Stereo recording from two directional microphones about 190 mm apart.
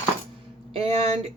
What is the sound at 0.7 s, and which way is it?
Speech, 30° right (ahead or behind).